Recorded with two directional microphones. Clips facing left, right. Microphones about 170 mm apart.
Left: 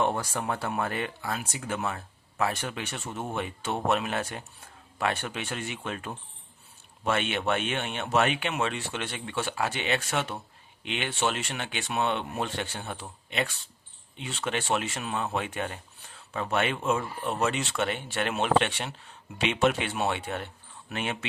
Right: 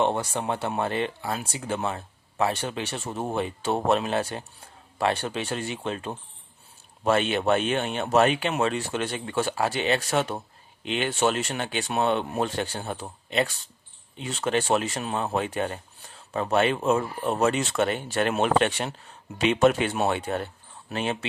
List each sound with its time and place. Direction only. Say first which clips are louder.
0.0 s speech: right 3 dB; 20° right (ahead or behind)